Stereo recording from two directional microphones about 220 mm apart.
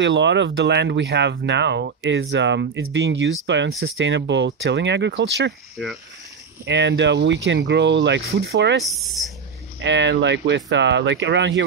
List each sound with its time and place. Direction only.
0.0 s speech: 55° right (ahead or behind)
5.8 s speech: centre (ahead or behind)
6.6 s speech: 55° right (ahead or behind)
8.8 s speech: centre (ahead or behind)
9.8 s speech: 55° right (ahead or behind)